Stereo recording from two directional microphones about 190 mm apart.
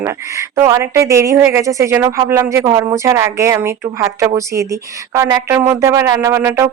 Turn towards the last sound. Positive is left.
turn(degrees=-15)  # may be behind; listen again after turning